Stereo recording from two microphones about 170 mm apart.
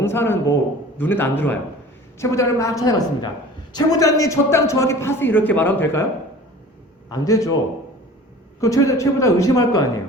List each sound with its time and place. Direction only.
0.0 s a man's voice: 15° left (ahead or behind)
7.1 s speech: 20° left (ahead or behind)
8.6 s speech: 20° left (ahead or behind)